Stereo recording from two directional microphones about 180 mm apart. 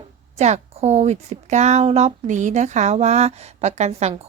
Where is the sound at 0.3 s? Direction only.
40° right (ahead or behind).